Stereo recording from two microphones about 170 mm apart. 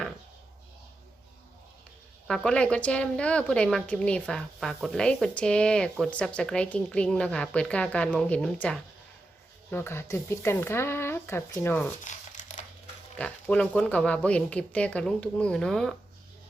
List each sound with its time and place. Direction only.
2.2 s a woman's voice: 5° left (ahead or behind)
12.0 s crumpling: 45° left (ahead or behind)
13.1 s speech: 5° left (ahead or behind)